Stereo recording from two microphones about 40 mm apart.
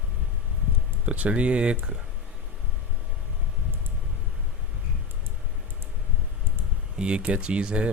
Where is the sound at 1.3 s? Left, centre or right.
Right.